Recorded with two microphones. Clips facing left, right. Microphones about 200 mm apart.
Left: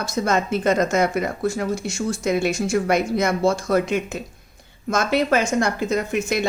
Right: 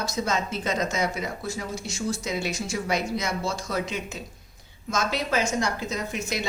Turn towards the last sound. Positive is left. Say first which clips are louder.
# left 8 dB
turn(degrees=55)  # may be behind; listen again after turning